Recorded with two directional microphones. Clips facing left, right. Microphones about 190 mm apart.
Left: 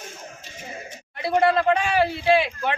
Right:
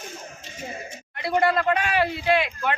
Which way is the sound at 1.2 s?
30° left (ahead or behind).